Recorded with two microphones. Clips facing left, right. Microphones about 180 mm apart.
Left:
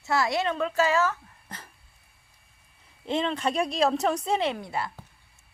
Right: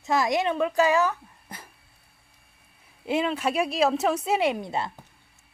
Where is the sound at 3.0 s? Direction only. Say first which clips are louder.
Right 2 dB; 10° right (ahead or behind).